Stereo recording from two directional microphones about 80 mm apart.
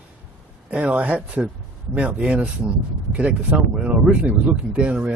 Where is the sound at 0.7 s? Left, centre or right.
Centre.